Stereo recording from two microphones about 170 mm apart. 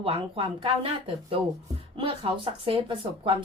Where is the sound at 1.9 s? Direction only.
30° right (ahead or behind).